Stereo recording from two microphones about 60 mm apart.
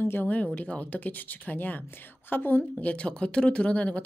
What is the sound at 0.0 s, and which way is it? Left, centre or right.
A woman's voice, left.